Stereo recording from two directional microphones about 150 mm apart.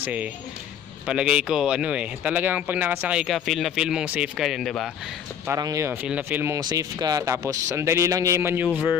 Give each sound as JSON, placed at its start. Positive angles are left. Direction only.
{"t": 0.0, "sound": "speech", "side_deg": -10}
{"t": 5.5, "sound": "speech", "side_deg": -25}